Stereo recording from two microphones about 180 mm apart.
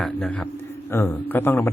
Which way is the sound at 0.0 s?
10° left (ahead or behind).